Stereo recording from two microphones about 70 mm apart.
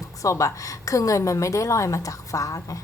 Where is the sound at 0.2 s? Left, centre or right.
Left.